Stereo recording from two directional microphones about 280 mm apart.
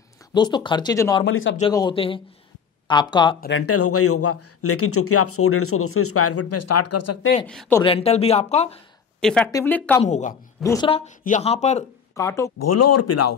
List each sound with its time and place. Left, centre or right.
0.3 s speech: centre
1.2 s speech: left
1.6 s speech: centre
3.3 s speech: left
3.6 s speech: left
7.4 s speech: centre
7.8 s a woman's voice: left
9.2 s speech: centre
10.0 s a woman's voice: left
10.6 s a woman's voice: centre
12.2 s speech: centre
12.5 s speech: left